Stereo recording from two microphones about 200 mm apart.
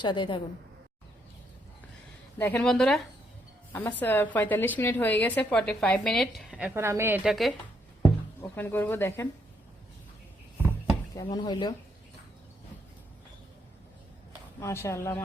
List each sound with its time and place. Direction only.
0.0 s speech: 25° left (ahead or behind)
2.4 s a woman's voice: 5° left (ahead or behind); by 7.3 s 10° right (ahead or behind)
8.4 s a woman's voice: 10° left (ahead or behind)
11.1 s speech: 20° left (ahead or behind)
14.6 s a woman's voice: 15° left (ahead or behind)